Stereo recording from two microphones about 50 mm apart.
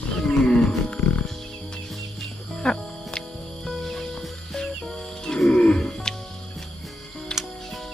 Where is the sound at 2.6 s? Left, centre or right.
Centre.